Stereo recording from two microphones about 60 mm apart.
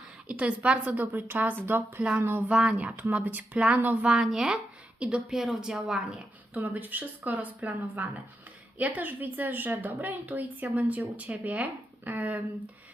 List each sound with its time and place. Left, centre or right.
0.3 s a woman's voice: right
1.1 s a woman's voice: right
2.5 s a woman's voice: right
4.0 s speech: centre
6.5 s a woman's voice: right